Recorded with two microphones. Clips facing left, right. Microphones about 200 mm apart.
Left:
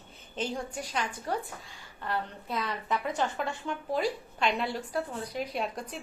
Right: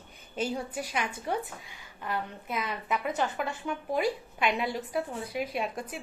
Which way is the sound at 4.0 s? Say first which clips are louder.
Right 1 dB; 10° right (ahead or behind).